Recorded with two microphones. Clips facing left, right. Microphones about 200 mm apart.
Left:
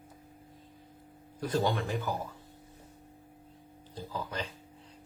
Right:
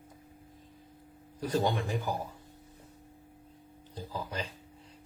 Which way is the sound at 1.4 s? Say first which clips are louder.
Even; 15° right (ahead or behind).